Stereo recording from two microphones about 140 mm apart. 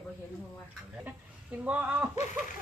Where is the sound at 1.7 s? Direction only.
10° right (ahead or behind).